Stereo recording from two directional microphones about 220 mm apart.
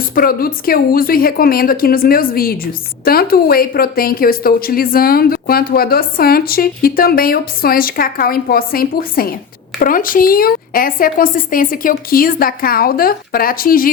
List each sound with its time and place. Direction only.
0.1 s a woman's voice: 40° left (ahead or behind)